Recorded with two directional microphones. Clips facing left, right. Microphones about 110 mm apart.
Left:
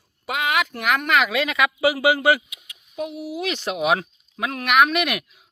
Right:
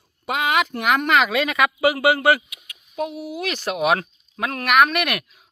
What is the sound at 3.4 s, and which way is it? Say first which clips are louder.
Speech: even; 20° left (ahead or behind).